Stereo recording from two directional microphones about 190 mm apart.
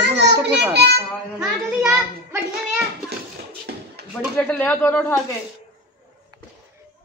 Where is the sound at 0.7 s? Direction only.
60° right (ahead or behind).